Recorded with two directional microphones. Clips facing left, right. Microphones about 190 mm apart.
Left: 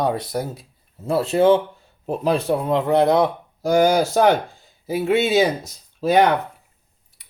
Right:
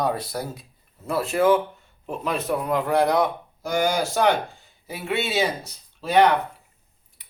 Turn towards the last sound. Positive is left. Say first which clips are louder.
# left 3 dB
turn(degrees=45)  # may be behind; listen again after turning